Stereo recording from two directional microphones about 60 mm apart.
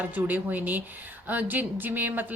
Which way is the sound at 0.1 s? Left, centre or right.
Right.